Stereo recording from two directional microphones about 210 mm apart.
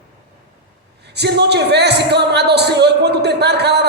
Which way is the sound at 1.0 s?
55° right (ahead or behind).